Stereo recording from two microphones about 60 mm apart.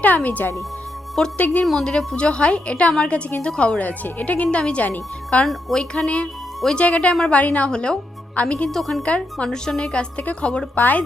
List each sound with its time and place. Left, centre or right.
0.0 s speech: left
1.2 s a woman's voice: centre
8.7 s a woman's voice: centre
9.0 s a woman's voice: centre